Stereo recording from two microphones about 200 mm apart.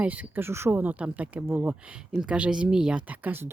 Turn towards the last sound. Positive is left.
turn(degrees=-10)  # may be behind; listen again after turning